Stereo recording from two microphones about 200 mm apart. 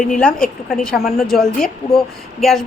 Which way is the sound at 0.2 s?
5° left (ahead or behind).